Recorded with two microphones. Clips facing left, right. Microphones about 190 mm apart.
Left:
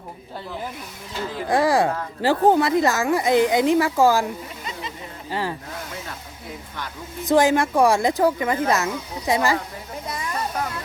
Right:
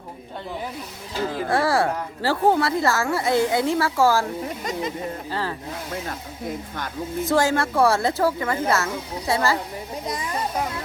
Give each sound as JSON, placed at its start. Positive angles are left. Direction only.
{"t": 1.5, "sound": "a woman's voice", "side_deg": 15}
{"t": 5.3, "sound": "a woman's voice", "side_deg": 15}
{"t": 7.3, "sound": "a woman's voice", "side_deg": 15}
{"t": 10.1, "sound": "children playing", "side_deg": -15}